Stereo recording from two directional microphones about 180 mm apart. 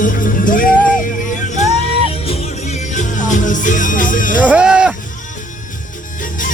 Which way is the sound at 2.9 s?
45° left (ahead or behind).